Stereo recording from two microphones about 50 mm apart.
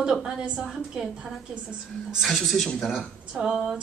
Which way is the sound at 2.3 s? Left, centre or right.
Centre.